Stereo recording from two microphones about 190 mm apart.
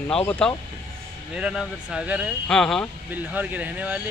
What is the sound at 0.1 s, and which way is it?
Speech, 5° left (ahead or behind).